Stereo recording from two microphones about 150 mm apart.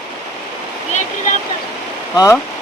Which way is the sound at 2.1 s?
20° left (ahead or behind).